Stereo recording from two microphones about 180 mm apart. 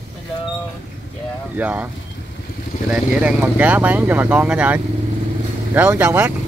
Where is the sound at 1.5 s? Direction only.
10° right (ahead or behind).